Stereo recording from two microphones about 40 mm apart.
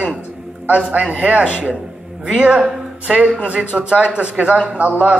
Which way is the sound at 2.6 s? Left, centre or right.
Right.